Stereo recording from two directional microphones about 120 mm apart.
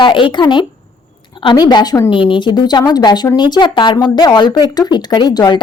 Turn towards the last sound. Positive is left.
turn(degrees=35)  # may be behind; listen again after turning